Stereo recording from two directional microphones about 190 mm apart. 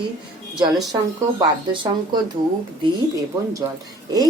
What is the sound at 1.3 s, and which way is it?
Speech, 25° right (ahead or behind).